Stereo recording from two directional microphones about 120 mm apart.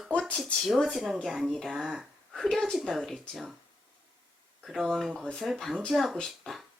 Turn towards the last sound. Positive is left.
turn(degrees=5)  # may be behind; listen again after turning